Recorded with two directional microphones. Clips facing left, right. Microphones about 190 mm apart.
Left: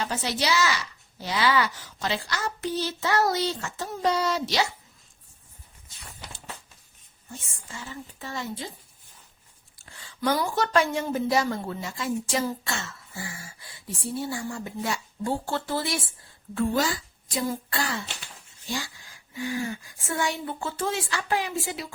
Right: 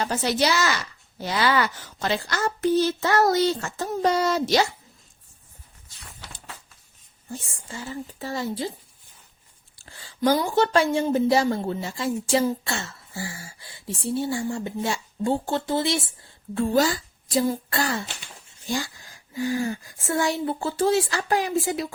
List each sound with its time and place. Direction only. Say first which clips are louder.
0.0 s a woman's voice: right 5 dB; 45° right (ahead or behind)
7.3 s speech: right 6 dB; 35° right (ahead or behind)
9.7 s speech: right 4 dB; 30° right (ahead or behind)
16.6 s speech: right 4 dB; 40° right (ahead or behind)
19.3 s speech: right 5 dB; 40° right (ahead or behind)